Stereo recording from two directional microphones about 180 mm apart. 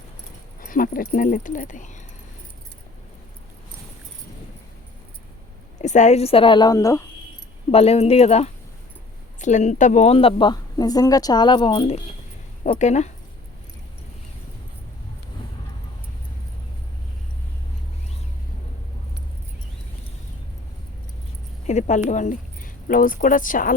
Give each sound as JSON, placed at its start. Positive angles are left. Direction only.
{"t": 0.6, "sound": "speech", "side_deg": 50}
{"t": 5.8, "sound": "speech", "side_deg": 40}
{"t": 7.7, "sound": "speech", "side_deg": 35}
{"t": 21.7, "sound": "speech", "side_deg": 40}